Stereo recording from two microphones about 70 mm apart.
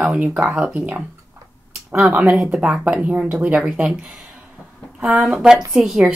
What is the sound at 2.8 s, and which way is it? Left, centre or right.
A woman's voice, right.